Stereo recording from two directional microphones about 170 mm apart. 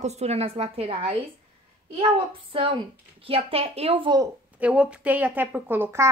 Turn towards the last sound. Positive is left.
turn(degrees=-15)  # may be behind; listen again after turning